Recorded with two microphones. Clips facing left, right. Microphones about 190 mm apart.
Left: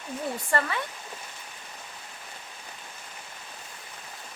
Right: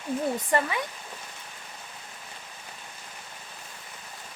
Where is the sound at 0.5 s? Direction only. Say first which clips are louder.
Right 1 dB; 15° right (ahead or behind).